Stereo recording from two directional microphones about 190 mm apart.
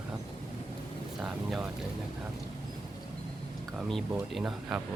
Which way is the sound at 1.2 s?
Centre (ahead or behind).